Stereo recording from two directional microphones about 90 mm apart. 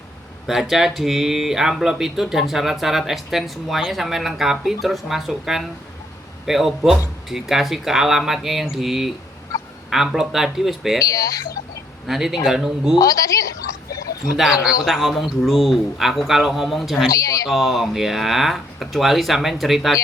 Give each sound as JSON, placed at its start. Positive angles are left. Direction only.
{"t": 0.4, "sound": "speech", "side_deg": -5}
{"t": 9.5, "sound": "fowl", "side_deg": 40}
{"t": 9.9, "sound": "speech", "side_deg": -5}
{"t": 11.0, "sound": "speech", "side_deg": 40}
{"t": 12.0, "sound": "speech", "side_deg": -5}
{"t": 13.0, "sound": "a woman's voice", "side_deg": 40}
{"t": 14.8, "sound": "speech", "side_deg": 0}
{"t": 17.1, "sound": "speech", "side_deg": 40}
{"t": 17.5, "sound": "speech", "side_deg": 0}